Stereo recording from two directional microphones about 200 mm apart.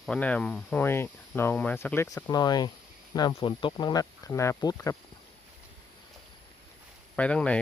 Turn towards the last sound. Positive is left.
turn(degrees=5)  # may be behind; listen again after turning